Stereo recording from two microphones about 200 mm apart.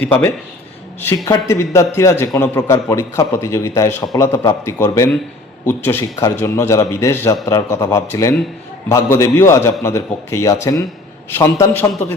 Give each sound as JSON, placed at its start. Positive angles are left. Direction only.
{"t": 0.0, "sound": "a man's voice", "side_deg": 10}